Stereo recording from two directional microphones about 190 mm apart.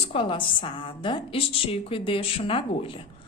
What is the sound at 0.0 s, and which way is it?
A woman's voice, 30° left (ahead or behind).